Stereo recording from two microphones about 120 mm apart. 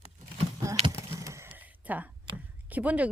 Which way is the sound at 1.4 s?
15° right (ahead or behind).